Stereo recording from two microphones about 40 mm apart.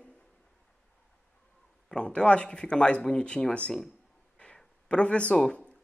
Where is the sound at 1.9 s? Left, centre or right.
Left.